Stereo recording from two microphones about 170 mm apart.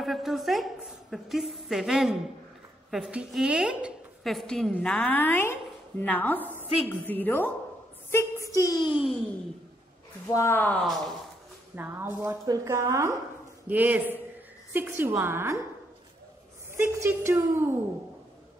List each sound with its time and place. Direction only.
0.0 s a sound: centre (ahead or behind)
1.1 s a woman's voice: centre (ahead or behind); by 8.9 s 20° left (ahead or behind)
10.2 s speech: 15° left (ahead or behind)
11.7 s a woman's voice: 15° right (ahead or behind)
16.7 s a woman's voice: 15° right (ahead or behind)